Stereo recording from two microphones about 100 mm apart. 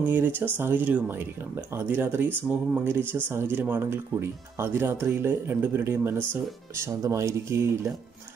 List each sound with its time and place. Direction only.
0.0 s speech: 15° right (ahead or behind)